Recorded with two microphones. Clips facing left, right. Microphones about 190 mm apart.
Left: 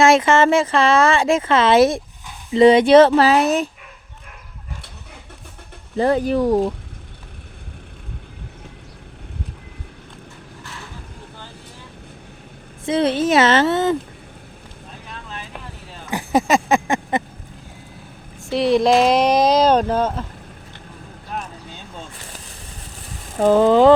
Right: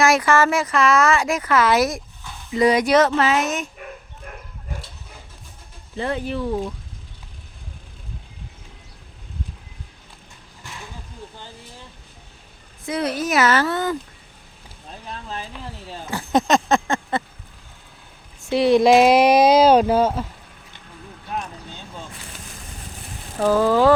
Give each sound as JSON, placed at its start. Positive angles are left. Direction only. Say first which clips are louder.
{"t": 0.0, "sound": "speech", "louder": "left 4 dB", "side_deg": 25}
{"t": 6.0, "sound": "speech", "louder": "left 8 dB", "side_deg": 40}
{"t": 10.6, "sound": "vehicle", "louder": "even", "side_deg": -15}
{"t": 12.8, "sound": "speech", "louder": "left 6 dB", "side_deg": 25}
{"t": 15.1, "sound": "vehicle", "louder": "right 3 dB", "side_deg": -35}
{"t": 16.1, "sound": "a sound", "louder": "left 1 dB", "side_deg": 10}
{"t": 18.4, "sound": "speech", "louder": "right 1 dB", "side_deg": 0}
{"t": 23.4, "sound": "speech", "louder": "left 4 dB", "side_deg": 20}